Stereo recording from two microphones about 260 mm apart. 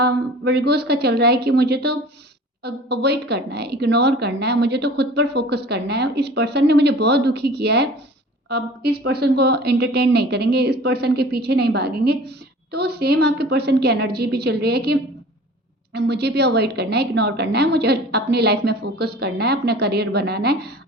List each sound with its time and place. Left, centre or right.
0.0 s a woman's voice: right